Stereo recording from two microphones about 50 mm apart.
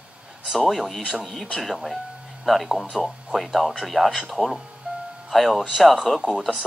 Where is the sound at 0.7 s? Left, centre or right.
Centre.